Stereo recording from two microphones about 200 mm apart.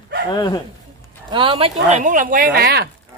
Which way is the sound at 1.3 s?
25° right (ahead or behind).